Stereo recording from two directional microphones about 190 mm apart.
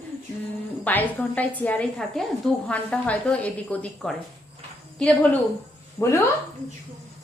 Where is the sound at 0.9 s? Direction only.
10° left (ahead or behind).